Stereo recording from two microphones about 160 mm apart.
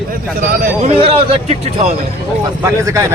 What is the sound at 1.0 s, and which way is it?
Speech, 35° right (ahead or behind).